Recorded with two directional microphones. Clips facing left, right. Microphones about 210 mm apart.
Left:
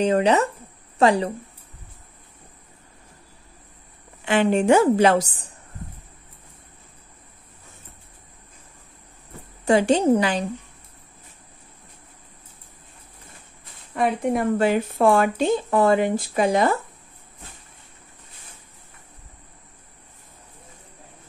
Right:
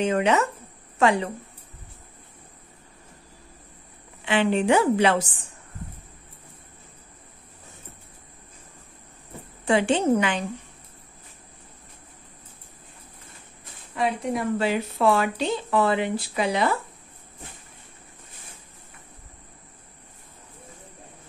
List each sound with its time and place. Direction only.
0.0 s a woman's voice: 35° left (ahead or behind)
4.2 s speech: 45° left (ahead or behind)
9.7 s a woman's voice: 40° left (ahead or behind)
13.9 s speech: 55° left (ahead or behind)